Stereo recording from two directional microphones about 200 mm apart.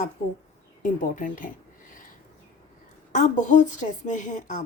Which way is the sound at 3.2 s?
35° left (ahead or behind).